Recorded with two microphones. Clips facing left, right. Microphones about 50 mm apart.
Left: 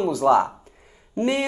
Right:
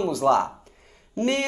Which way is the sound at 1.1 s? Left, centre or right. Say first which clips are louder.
Left 1 dB; centre.